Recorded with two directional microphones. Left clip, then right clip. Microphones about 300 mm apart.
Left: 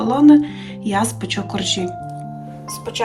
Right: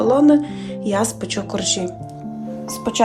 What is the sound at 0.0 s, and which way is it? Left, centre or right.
Speech, centre.